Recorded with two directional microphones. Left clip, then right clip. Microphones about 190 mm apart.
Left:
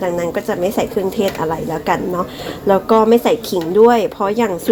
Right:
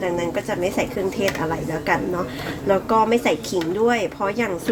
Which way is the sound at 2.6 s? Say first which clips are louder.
Left 6 dB; 30° left (ahead or behind).